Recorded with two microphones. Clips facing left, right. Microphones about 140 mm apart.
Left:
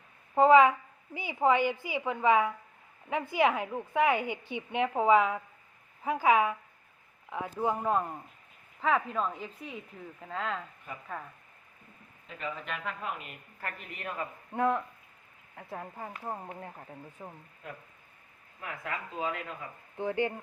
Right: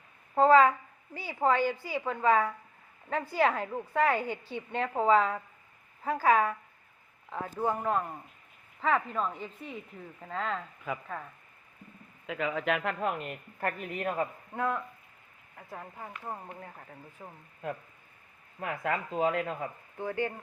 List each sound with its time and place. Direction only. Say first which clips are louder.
0.3 s a woman's voice: left 1 dB; 15° left (ahead or behind)
8.8 s speech: even; centre (ahead or behind)
12.2 s a woman's voice: right 8 dB; 90° right; by 14.3 s 40° right (ahead or behind)
14.5 s speech: left 7 dB; 20° left (ahead or behind)
15.8 s a woman's voice: left 1 dB; 10° left (ahead or behind)
17.2 s speech: left 1 dB; 5° left (ahead or behind)
18.6 s speech: right 6 dB; 45° right (ahead or behind)
20.0 s speech: left 2 dB; 20° left (ahead or behind)